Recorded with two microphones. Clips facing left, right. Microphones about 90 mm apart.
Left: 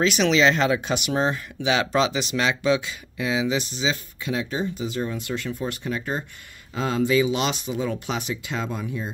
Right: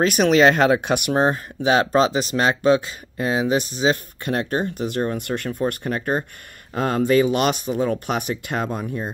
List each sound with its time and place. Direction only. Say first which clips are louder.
0.0 s speech: right 4 dB; 50° right (ahead or behind)